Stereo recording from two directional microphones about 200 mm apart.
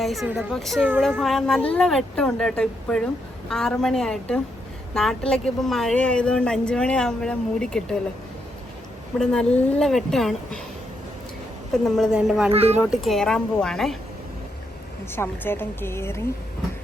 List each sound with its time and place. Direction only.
0.0 s a woman's voice: centre (ahead or behind)
9.1 s a woman's voice: 5° left (ahead or behind)
11.7 s a woman's voice: centre (ahead or behind)
12.5 s speech: 30° right (ahead or behind)
12.7 s a woman's voice: centre (ahead or behind)
15.1 s a woman's voice: 10° left (ahead or behind)